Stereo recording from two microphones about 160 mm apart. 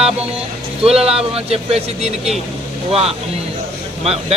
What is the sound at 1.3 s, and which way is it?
Speech, 40° right (ahead or behind).